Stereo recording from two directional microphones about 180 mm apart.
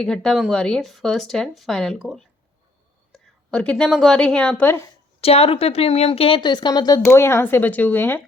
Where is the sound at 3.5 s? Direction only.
5° left (ahead or behind).